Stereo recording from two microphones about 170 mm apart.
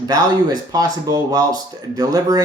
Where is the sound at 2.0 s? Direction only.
20° right (ahead or behind).